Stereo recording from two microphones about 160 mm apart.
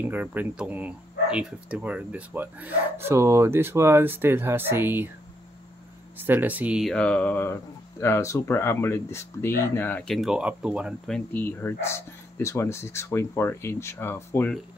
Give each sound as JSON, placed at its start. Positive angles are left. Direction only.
{"t": 0.0, "sound": "speech", "side_deg": -10}
{"t": 6.1, "sound": "speech", "side_deg": -10}
{"t": 6.9, "sound": "speech", "side_deg": 5}
{"t": 10.1, "sound": "speech", "side_deg": -5}
{"t": 11.1, "sound": "speech", "side_deg": 5}